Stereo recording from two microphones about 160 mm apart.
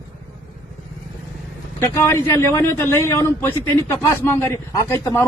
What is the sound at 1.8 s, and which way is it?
Speech, 15° left (ahead or behind).